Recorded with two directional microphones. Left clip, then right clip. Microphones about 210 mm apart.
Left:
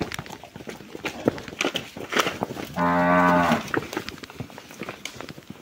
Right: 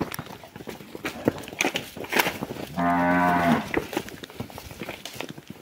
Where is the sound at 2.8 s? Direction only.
45° left (ahead or behind).